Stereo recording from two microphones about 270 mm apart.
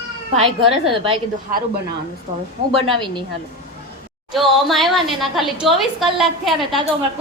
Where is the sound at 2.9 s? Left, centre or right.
Centre.